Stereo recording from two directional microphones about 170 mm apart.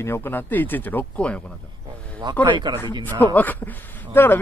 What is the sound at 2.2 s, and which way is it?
Speech, 25° right (ahead or behind).